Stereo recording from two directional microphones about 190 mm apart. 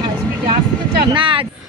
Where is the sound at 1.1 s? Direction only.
25° right (ahead or behind).